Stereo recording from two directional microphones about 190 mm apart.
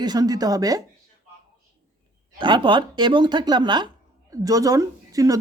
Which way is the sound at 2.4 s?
25° right (ahead or behind).